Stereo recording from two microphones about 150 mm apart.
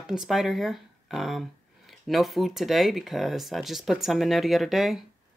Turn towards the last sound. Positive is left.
turn(degrees=0)  # may be behind; listen again after turning